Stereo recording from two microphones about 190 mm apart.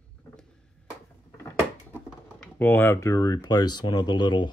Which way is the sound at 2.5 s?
10° left (ahead or behind).